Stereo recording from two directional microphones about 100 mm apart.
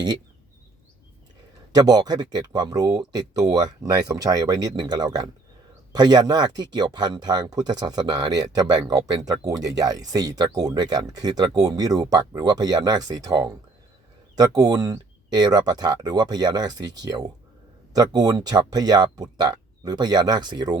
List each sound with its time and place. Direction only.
1.7 s speech: 40° right (ahead or behind)